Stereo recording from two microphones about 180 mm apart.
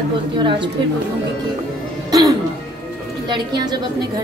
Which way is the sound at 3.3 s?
20° right (ahead or behind).